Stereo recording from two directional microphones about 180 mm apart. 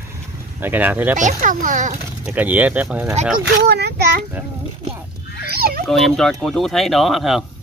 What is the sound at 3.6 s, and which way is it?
Speech, 65° right (ahead or behind).